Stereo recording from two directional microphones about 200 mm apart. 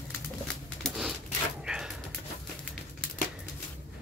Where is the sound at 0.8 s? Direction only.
Centre (ahead or behind).